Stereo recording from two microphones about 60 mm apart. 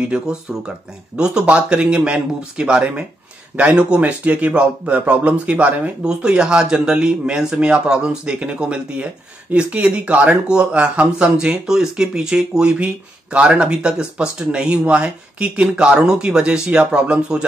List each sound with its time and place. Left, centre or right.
0.0 s speech: centre
6.0 s speech: centre